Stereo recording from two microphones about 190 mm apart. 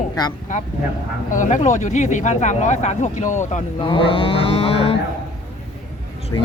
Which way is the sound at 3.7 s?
25° left (ahead or behind).